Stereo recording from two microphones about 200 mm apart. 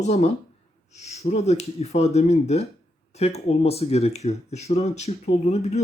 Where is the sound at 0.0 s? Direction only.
35° left (ahead or behind).